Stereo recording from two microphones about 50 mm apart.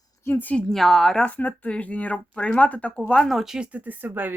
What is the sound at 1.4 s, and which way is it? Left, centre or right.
A woman's voice, left.